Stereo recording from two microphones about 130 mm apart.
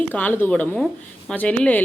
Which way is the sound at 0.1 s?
15° left (ahead or behind).